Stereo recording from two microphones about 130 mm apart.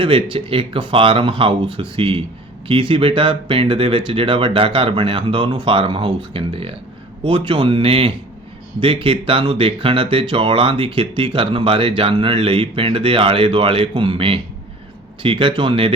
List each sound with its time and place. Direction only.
0.0 s speech: 45° right (ahead or behind)